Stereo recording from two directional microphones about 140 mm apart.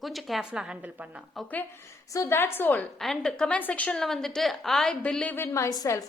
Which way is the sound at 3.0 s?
5° left (ahead or behind).